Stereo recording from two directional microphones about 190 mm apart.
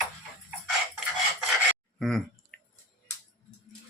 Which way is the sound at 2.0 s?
Centre (ahead or behind).